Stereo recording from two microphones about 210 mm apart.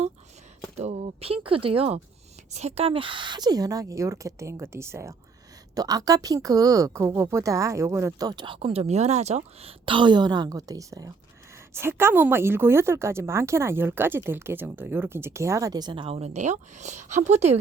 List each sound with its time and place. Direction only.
0.8 s a woman's voice: 30° right (ahead or behind)